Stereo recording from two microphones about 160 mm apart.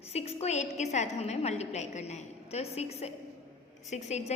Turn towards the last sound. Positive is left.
turn(degrees=45)  # may be behind; listen again after turning